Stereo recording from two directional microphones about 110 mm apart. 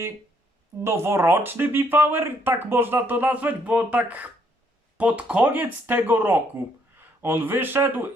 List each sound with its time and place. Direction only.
0.9 s speech: 25° right (ahead or behind)